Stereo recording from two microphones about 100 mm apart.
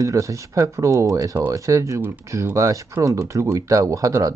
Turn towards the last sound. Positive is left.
turn(degrees=-35)  # may be behind; listen again after turning